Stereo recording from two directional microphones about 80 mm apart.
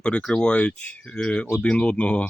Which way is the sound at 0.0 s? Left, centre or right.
Centre.